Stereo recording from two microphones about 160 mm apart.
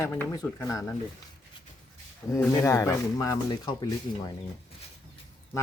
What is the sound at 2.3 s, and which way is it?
Speech, 15° left (ahead or behind).